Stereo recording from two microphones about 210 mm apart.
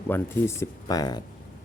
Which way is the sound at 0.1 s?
10° left (ahead or behind).